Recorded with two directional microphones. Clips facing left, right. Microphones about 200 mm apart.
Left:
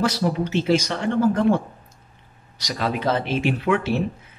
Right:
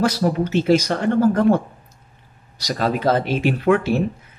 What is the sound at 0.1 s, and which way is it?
Speech, 45° right (ahead or behind).